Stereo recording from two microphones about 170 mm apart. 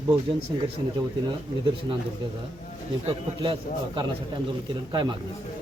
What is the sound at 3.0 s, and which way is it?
A man's voice, 30° right (ahead or behind).